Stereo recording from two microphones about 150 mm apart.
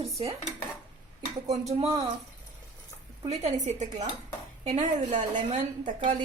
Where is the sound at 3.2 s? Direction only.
45° right (ahead or behind).